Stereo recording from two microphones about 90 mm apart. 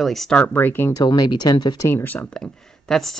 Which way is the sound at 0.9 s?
50° left (ahead or behind).